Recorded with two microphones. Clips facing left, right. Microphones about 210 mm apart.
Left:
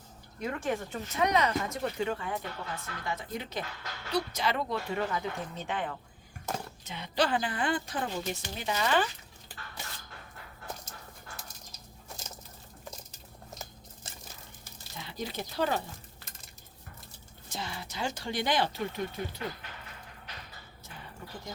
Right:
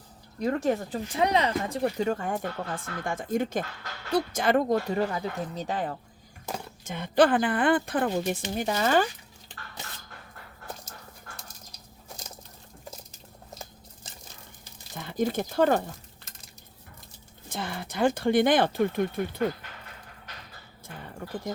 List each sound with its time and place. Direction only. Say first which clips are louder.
0.3 s speech: right 7 dB; 40° right (ahead or behind)
6.8 s a woman's voice: right 9 dB; 50° right (ahead or behind)
14.9 s speech: right 10 dB; 50° right (ahead or behind)
17.5 s a woman's voice: right 5 dB; 55° right (ahead or behind)